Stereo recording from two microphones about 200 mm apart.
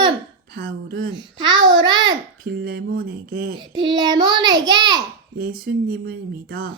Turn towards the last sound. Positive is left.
turn(degrees=-50)  # may be behind; listen again after turning